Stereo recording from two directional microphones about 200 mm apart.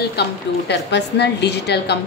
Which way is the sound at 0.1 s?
55° left (ahead or behind).